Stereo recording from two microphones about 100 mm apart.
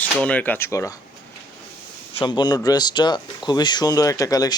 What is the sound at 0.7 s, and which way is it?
Speech, 30° left (ahead or behind).